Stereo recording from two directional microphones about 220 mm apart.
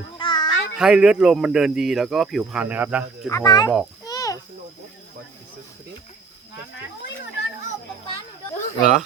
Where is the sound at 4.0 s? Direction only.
15° left (ahead or behind).